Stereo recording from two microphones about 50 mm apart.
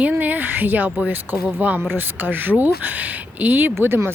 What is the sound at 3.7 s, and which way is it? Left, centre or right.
Speech, right.